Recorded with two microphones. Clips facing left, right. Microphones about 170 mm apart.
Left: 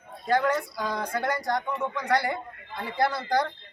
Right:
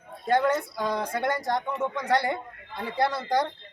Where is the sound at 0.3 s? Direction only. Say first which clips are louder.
Right 1 dB; 25° right (ahead or behind).